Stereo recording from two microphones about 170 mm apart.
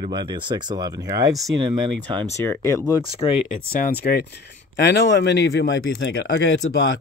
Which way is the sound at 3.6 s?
60° left (ahead or behind).